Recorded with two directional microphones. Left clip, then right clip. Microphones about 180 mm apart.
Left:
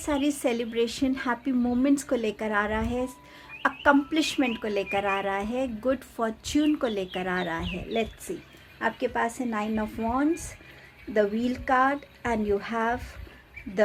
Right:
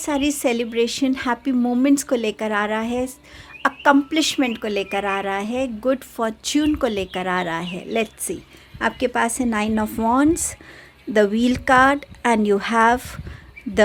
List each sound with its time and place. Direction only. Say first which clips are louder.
0.0 s speech: right 6 dB; 30° right (ahead or behind)
8.3 s speech: right 6 dB; 50° right (ahead or behind)
8.8 s a woman's voice: right 6 dB; 60° right (ahead or behind)